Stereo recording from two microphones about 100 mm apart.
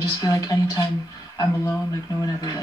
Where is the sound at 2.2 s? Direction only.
40° left (ahead or behind).